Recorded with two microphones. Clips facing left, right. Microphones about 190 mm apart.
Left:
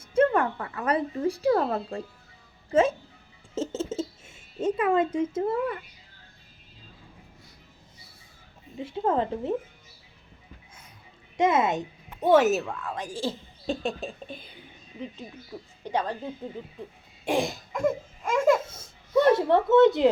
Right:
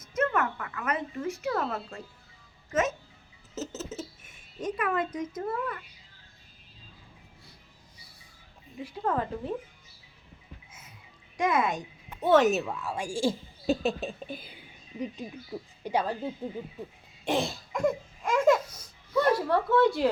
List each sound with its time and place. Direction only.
0.0 s speech: 30° left (ahead or behind)
8.8 s speech: 25° left (ahead or behind)
11.3 s a woman's voice: 25° left (ahead or behind)
12.3 s a woman's voice: 5° left (ahead or behind)
15.8 s a woman's voice: 10° right (ahead or behind)
17.2 s cough: 15° left (ahead or behind)
17.7 s a sound: 5° left (ahead or behind)
18.6 s speech: 25° left (ahead or behind)